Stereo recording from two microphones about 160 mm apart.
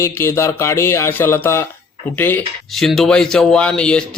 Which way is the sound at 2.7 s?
Centre (ahead or behind).